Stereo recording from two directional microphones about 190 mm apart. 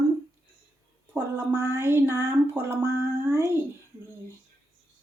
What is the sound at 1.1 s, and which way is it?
Speech, 15° right (ahead or behind).